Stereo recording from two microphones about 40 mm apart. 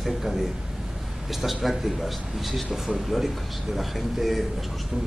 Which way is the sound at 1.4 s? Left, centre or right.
Centre.